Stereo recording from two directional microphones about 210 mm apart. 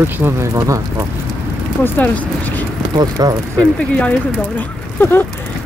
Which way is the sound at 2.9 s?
20° right (ahead or behind).